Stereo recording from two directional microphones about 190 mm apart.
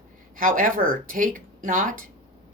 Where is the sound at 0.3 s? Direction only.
45° right (ahead or behind).